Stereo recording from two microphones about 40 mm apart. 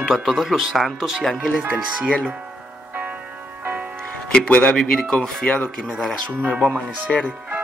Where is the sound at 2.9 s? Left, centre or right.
Right.